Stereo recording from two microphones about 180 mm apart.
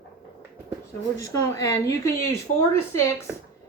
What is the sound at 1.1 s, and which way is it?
Speech, 20° left (ahead or behind).